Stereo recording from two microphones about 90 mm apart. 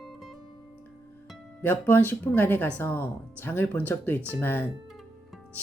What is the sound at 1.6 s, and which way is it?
Speech, 20° left (ahead or behind).